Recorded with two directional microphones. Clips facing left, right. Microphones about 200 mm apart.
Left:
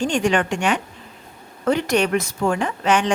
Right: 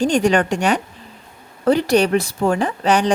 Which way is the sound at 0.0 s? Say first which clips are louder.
Right 4 dB; 40° right (ahead or behind).